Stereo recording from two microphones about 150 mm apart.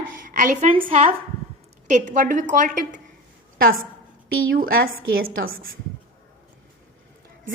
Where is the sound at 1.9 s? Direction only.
55° right (ahead or behind).